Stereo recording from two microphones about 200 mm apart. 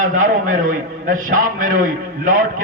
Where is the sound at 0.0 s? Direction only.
40° right (ahead or behind).